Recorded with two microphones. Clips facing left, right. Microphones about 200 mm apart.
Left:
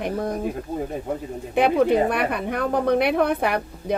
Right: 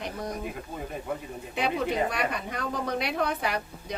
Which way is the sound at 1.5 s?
55° left (ahead or behind).